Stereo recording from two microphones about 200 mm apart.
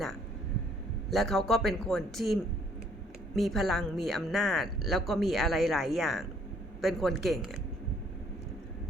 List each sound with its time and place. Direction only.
1.1 s speech: centre (ahead or behind)